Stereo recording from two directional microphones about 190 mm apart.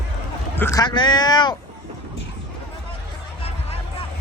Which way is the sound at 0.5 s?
15° left (ahead or behind).